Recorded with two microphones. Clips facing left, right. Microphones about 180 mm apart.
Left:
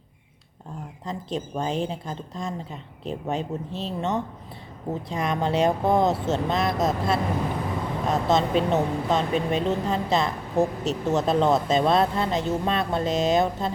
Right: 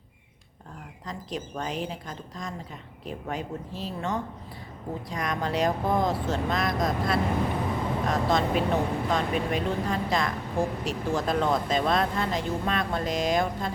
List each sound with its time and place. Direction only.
1.0 s speech: 25° left (ahead or behind)